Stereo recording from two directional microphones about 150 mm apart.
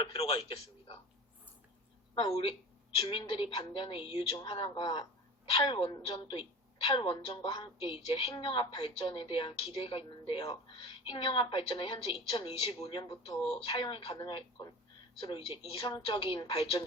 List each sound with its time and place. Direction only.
0.0 s a woman's voice: 35° left (ahead or behind)
2.1 s a woman's voice: 35° left (ahead or behind)